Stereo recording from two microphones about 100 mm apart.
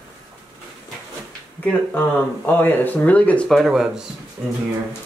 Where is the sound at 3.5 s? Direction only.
5° right (ahead or behind).